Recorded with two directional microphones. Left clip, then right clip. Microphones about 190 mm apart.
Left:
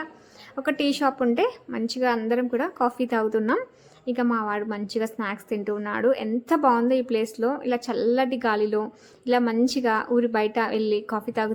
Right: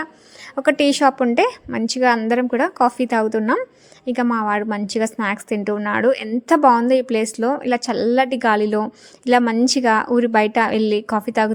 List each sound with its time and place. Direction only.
0.5 s a woman's voice: 45° right (ahead or behind)